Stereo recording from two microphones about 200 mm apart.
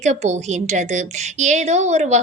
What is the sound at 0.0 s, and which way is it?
A woman's voice, 35° right (ahead or behind).